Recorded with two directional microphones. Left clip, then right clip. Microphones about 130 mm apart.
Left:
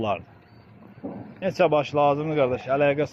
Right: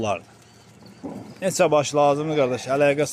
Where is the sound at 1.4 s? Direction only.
45° right (ahead or behind).